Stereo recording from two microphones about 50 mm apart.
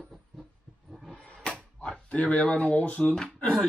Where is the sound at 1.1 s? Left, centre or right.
Left.